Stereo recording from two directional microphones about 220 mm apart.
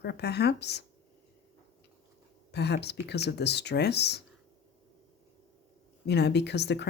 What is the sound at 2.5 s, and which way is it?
Speech, 50° left (ahead or behind).